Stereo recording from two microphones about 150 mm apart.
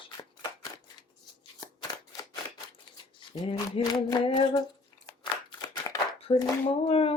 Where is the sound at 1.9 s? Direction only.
25° left (ahead or behind).